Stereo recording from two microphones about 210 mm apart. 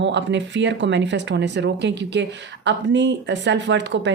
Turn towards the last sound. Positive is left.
turn(degrees=-60)  # may be behind; listen again after turning